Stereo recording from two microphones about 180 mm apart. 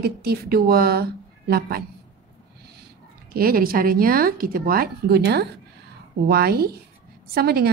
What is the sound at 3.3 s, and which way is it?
A woman's voice, 55° right (ahead or behind).